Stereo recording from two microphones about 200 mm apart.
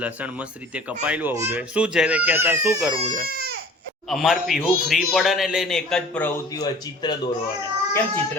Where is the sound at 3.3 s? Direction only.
50° right (ahead or behind).